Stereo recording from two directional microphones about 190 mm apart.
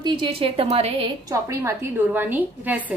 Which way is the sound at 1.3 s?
15° right (ahead or behind).